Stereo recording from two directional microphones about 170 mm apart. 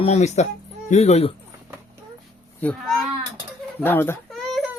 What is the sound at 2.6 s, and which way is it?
Speech, 5° left (ahead or behind).